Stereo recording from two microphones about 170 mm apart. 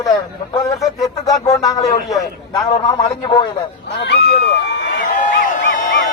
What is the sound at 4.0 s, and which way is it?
Speech, 80° left.